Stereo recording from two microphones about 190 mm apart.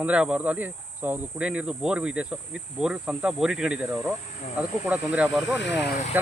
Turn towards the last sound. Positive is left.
turn(degrees=65)  # may be behind; listen again after turning